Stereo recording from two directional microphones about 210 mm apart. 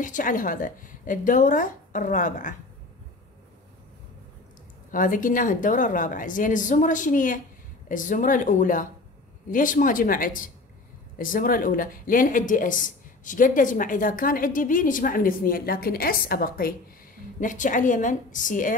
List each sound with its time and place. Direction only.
0.0 s speech: 40° left (ahead or behind)
4.9 s speech: 40° left (ahead or behind)